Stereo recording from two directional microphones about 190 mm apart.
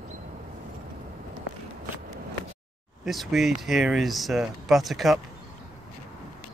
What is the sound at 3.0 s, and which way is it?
Speech, centre (ahead or behind).